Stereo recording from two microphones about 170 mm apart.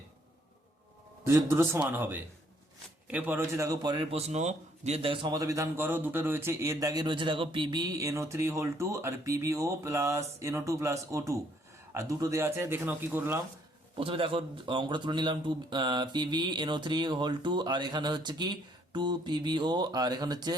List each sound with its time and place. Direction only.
1.3 s a man's voice: 15° right (ahead or behind)
4.1 s a man's voice: 40° right (ahead or behind); by 13.4 s 15° right (ahead or behind)
13.9 s speech: 30° right (ahead or behind)